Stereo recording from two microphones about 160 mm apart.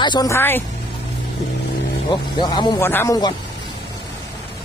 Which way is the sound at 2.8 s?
15° left (ahead or behind).